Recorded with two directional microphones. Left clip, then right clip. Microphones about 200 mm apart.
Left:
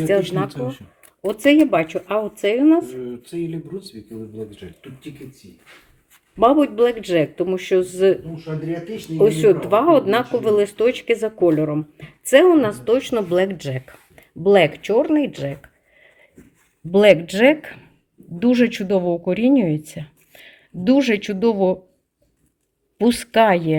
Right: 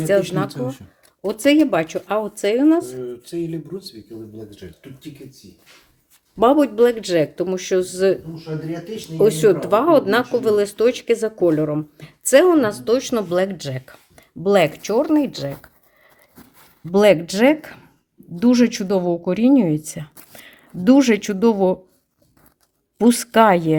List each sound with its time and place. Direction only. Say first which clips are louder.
0.4 s a woman's voice: even; 5° right (ahead or behind)
3.2 s speech: right 1 dB; 40° right (ahead or behind)
6.3 s speech: even; 10° right (ahead or behind)
16.9 s a woman's voice: left 1 dB; 5° right (ahead or behind)
23.0 s a woman's voice: right 1 dB; 10° right (ahead or behind)